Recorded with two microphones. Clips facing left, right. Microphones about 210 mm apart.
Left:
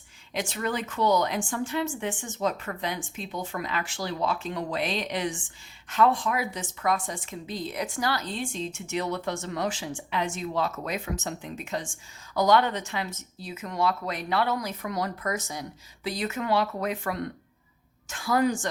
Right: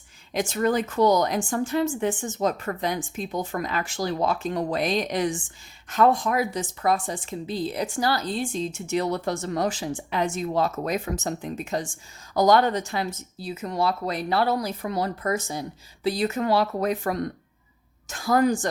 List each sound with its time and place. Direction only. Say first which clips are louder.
0.3 s a woman's voice: right 7 dB; 40° right (ahead or behind)